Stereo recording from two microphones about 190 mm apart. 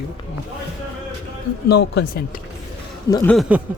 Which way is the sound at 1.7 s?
60° left (ahead or behind).